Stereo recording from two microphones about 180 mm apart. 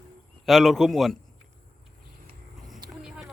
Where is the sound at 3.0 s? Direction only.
5° right (ahead or behind).